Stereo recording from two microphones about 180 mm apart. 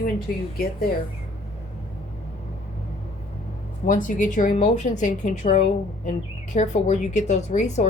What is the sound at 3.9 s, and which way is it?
A woman's voice, 45° left (ahead or behind).